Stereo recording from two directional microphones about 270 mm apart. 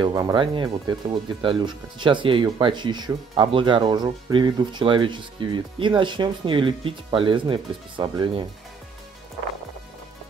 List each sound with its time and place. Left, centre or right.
0.0 s speech: centre